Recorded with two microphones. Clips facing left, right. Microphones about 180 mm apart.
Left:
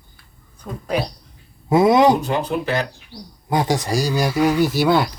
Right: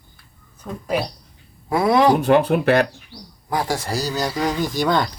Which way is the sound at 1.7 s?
20° left (ahead or behind).